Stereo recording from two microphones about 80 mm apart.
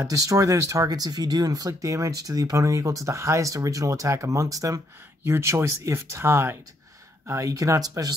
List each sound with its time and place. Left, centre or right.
0.0 s speech: right
0.8 s speech: right
5.2 s speech: right